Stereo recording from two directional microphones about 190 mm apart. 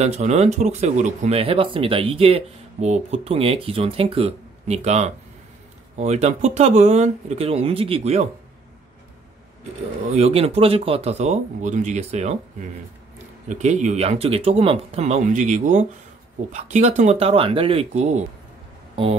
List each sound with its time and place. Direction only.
0.0 s speech: 35° right (ahead or behind)
10.1 s speech: 35° right (ahead or behind)
13.5 s speech: 40° right (ahead or behind)